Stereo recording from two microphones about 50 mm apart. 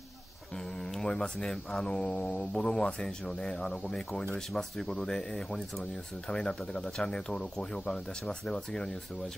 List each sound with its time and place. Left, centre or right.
0.9 s speech: centre